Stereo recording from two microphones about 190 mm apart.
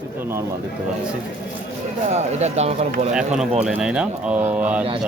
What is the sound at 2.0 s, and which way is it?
Speech, 35° right (ahead or behind).